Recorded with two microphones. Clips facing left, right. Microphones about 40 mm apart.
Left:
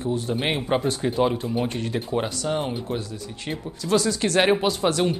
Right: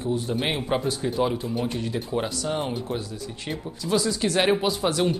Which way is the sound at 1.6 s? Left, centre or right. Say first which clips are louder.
Left 1 dB; left.